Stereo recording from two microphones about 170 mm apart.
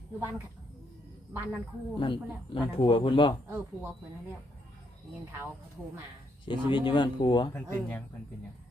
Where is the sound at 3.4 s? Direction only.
15° right (ahead or behind).